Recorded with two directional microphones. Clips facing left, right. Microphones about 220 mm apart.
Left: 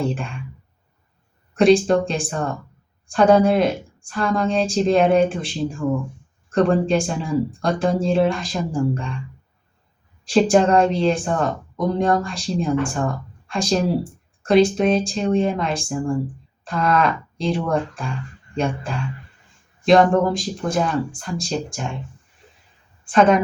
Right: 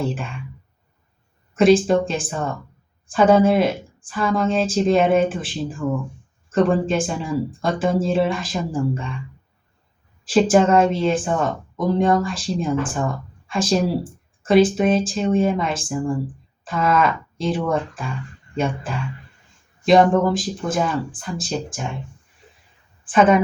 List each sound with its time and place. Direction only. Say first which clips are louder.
0.0 s speech: left 1 dB; centre (ahead or behind)
1.5 s speech: even; centre (ahead or behind)
10.2 s speech: even; centre (ahead or behind)
23.0 s speech: even; 5° right (ahead or behind)